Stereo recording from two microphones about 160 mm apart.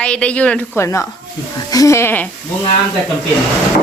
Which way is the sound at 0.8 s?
20° left (ahead or behind).